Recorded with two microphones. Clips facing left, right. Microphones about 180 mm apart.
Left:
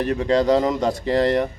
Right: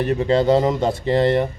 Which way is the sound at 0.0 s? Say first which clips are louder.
Right 1 dB; centre (ahead or behind).